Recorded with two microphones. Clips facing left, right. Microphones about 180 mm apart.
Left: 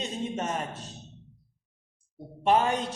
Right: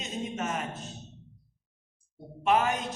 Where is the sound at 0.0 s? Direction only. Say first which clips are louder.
Left 2 dB; 30° left (ahead or behind).